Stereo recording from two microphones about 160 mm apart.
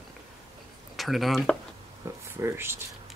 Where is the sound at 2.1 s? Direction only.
20° right (ahead or behind).